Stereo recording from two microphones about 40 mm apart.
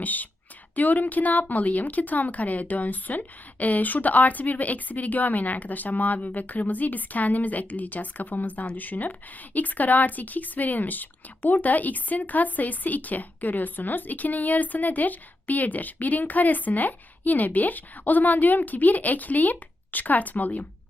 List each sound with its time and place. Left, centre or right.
0.0 s a woman's voice: left